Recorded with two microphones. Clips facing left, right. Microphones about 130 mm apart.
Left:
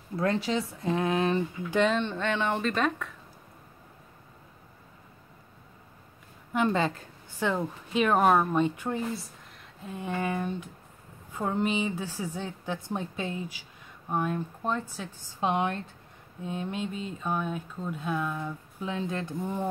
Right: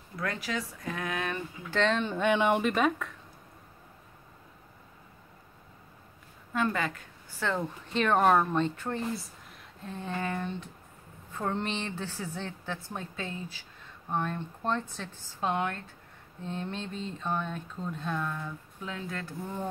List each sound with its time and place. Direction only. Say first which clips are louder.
0.1 s speech: left 7 dB; 30° left (ahead or behind)
1.7 s a woman's voice: left 2 dB; 10° left (ahead or behind)
2.0 s speech: right 2 dB; 10° right (ahead or behind)
6.5 s a woman's voice: left 4 dB; 20° left (ahead or behind)
7.5 s a woman's voice: left 3 dB; 5° left (ahead or behind)
16.4 s a woman's voice: left 3 dB; 10° left (ahead or behind)